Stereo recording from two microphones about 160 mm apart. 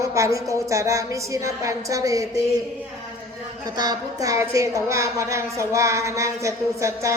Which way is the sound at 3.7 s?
25° right (ahead or behind).